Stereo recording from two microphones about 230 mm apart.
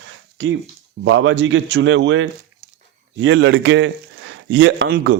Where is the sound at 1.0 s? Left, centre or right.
Right.